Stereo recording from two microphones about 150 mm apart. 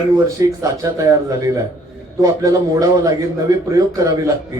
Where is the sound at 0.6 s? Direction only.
20° right (ahead or behind).